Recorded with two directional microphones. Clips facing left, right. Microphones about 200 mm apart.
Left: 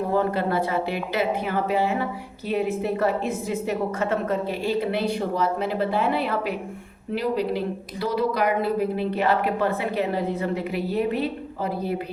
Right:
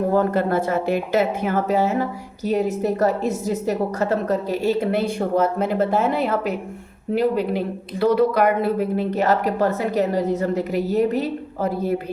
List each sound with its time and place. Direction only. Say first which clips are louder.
0.1 s a woman's voice: right 2 dB; 45° right (ahead or behind)